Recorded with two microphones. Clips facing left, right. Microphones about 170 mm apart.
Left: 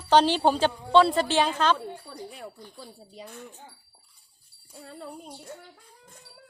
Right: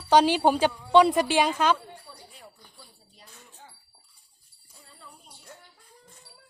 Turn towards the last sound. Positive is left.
turn(degrees=65)  # may be behind; listen again after turning